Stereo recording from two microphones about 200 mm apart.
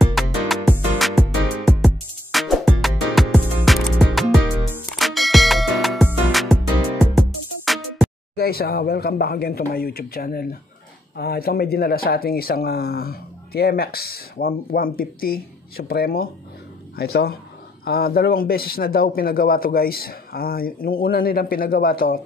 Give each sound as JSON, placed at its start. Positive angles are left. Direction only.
{"t": 0.0, "sound": "music", "side_deg": 0}
{"t": 8.4, "sound": "speech", "side_deg": 50}